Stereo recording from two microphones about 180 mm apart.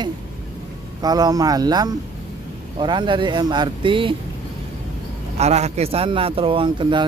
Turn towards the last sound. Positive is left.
turn(degrees=-25)  # may be behind; listen again after turning